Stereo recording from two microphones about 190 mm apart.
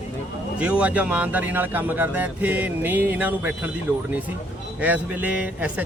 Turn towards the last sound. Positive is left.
turn(degrees=-10)  # may be behind; listen again after turning